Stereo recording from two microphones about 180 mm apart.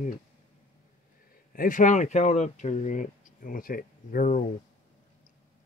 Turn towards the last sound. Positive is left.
turn(degrees=50)  # may be behind; listen again after turning